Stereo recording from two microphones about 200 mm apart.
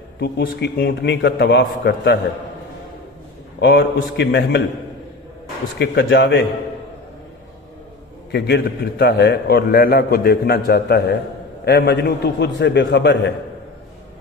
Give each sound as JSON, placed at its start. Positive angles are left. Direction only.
{"t": 0.2, "sound": "a man's voice", "side_deg": 55}
{"t": 3.6, "sound": "a man's voice", "side_deg": 55}
{"t": 5.8, "sound": "a man's voice", "side_deg": 55}
{"t": 8.3, "sound": "a man's voice", "side_deg": 55}